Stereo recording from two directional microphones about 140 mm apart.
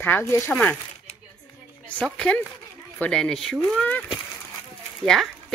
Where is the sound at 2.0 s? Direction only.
5° left (ahead or behind).